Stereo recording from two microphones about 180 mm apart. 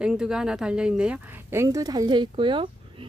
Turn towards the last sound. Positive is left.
turn(degrees=-30)  # may be behind; listen again after turning